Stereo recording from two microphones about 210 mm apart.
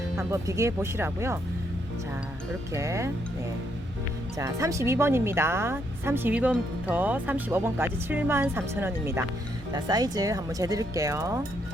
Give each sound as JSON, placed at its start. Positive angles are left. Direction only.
{"t": 0.2, "sound": "speech", "side_deg": -15}
{"t": 2.7, "sound": "speech", "side_deg": -15}
{"t": 4.4, "sound": "speech", "side_deg": -15}